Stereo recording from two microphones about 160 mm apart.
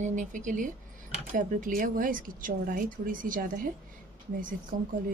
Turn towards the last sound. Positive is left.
turn(degrees=-60)  # may be behind; listen again after turning